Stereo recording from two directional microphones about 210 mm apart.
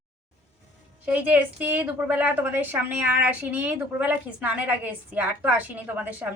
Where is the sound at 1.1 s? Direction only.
5° right (ahead or behind).